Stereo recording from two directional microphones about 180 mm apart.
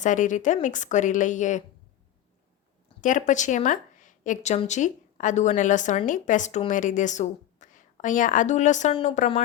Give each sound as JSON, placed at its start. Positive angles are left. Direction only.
{"t": 0.0, "sound": "speech", "side_deg": 45}
{"t": 3.0, "sound": "speech", "side_deg": 45}